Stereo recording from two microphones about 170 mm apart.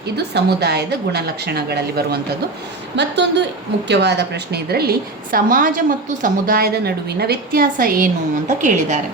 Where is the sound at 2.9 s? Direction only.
90° right; by 4.9 s 65° right (ahead or behind).